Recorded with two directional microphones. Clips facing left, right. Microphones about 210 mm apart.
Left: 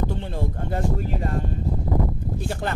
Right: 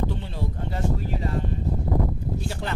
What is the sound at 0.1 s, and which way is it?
Speech, 50° left (ahead or behind).